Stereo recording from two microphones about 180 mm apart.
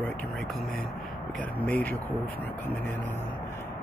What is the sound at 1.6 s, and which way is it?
Speech, 10° left (ahead or behind).